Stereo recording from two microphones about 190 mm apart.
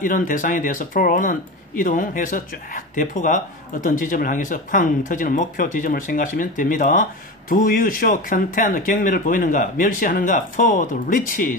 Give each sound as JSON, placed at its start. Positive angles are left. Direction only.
{"t": 0.0, "sound": "speech", "side_deg": 45}